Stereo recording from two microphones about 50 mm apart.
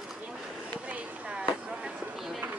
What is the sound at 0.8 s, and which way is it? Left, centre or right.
Fireworks, right.